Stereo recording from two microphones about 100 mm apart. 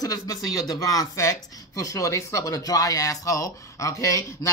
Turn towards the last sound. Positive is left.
turn(degrees=30)  # may be behind; listen again after turning